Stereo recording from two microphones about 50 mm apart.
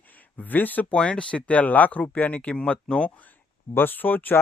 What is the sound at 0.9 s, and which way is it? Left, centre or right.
Speech, centre.